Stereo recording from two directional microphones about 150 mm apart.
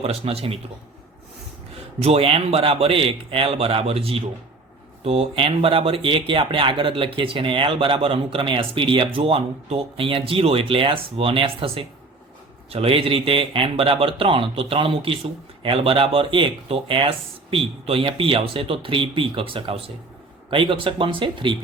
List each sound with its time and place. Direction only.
0.0 s speech: 40° right (ahead or behind)
2.0 s speech: 40° right (ahead or behind)